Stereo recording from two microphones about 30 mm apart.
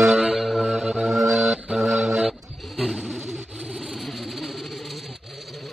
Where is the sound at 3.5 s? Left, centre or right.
Centre.